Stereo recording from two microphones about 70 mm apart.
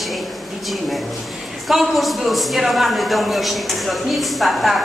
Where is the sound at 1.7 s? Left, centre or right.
Centre.